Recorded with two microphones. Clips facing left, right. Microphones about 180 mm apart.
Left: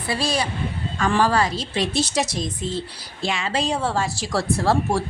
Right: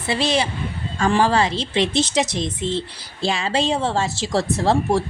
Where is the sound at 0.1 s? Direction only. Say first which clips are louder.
Right 3 dB; 25° right (ahead or behind).